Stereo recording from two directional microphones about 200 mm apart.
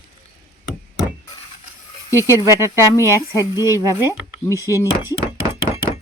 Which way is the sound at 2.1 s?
15° left (ahead or behind).